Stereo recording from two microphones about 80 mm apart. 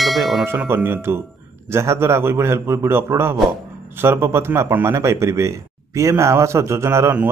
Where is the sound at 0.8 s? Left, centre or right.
Right.